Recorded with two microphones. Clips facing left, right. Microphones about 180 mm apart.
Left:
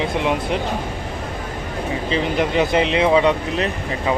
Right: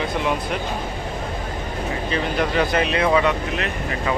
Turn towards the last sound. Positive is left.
turn(degrees=20)  # may be behind; listen again after turning